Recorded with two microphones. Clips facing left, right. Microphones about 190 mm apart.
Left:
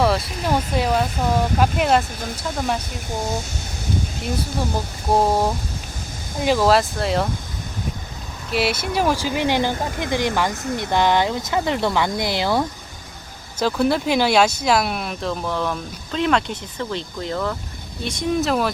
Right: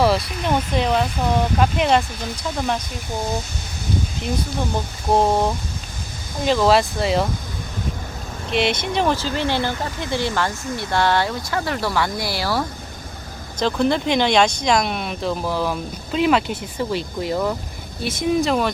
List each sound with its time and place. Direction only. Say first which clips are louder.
0.0 s speech: right 1 dB; centre (ahead or behind)
5.1 s speech: right 1 dB; 5° left (ahead or behind)
8.5 s speech: right 1 dB; 5° left (ahead or behind)
13.6 s speech: even; 5° left (ahead or behind)